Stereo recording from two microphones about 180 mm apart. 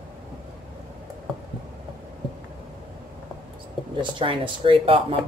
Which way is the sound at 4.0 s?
25° right (ahead or behind).